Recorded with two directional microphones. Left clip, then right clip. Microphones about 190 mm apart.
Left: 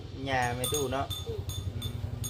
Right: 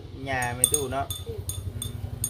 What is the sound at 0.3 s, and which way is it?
Speech, 10° right (ahead or behind).